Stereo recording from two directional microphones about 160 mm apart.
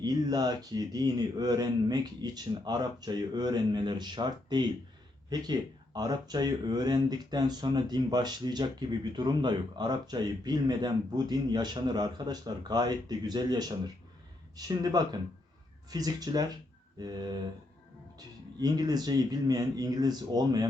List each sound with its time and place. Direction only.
0.0 s speech: 25° right (ahead or behind)
18.6 s speech: 25° right (ahead or behind)